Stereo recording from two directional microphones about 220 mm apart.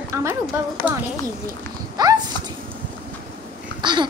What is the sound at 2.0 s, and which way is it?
Speech, 20° right (ahead or behind).